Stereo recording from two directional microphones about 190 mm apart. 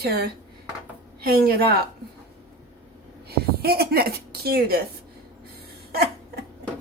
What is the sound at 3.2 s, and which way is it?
A woman's voice, 55° right (ahead or behind).